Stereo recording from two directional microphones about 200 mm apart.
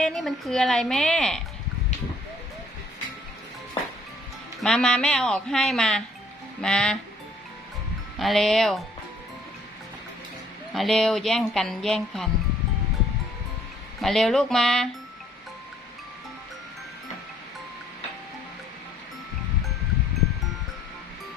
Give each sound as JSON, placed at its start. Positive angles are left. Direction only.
{"t": 0.0, "sound": "speech", "side_deg": 0}
{"t": 4.6, "sound": "speech", "side_deg": 5}
{"t": 8.2, "sound": "speech", "side_deg": 0}
{"t": 10.8, "sound": "speech", "side_deg": 0}
{"t": 14.0, "sound": "speech", "side_deg": 0}